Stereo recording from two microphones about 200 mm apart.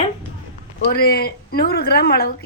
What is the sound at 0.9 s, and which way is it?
Speech, 50° left (ahead or behind).